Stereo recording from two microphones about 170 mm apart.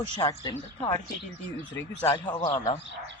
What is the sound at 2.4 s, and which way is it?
Speech, 35° left (ahead or behind).